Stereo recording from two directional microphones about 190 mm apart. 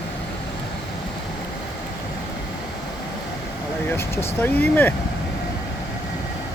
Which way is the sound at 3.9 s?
10° left (ahead or behind).